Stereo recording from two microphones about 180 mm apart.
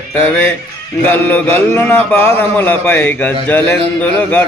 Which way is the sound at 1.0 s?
10° left (ahead or behind).